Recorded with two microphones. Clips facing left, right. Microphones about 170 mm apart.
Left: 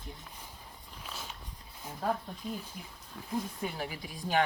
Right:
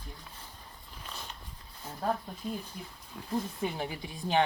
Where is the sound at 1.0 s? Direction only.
5° left (ahead or behind).